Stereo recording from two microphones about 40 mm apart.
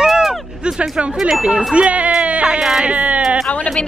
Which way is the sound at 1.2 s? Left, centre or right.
Centre.